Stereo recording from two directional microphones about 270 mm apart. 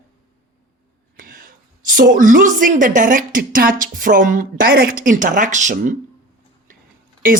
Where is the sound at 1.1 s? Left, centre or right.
Right.